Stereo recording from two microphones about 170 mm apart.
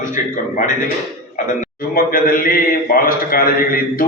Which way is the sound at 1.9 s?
60° left (ahead or behind).